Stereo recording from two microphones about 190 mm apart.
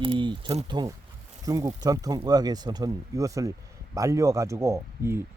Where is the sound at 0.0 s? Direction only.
25° right (ahead or behind).